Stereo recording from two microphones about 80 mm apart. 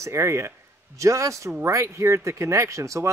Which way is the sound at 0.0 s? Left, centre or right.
Right.